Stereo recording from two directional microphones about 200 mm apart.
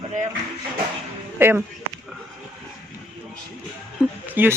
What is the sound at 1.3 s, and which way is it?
Speech, 10° right (ahead or behind).